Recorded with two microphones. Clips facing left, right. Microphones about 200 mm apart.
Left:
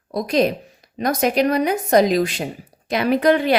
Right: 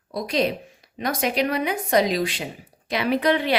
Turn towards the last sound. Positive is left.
turn(degrees=45)  # may be behind; listen again after turning